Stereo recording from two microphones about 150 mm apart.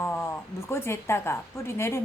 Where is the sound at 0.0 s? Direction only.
15° left (ahead or behind).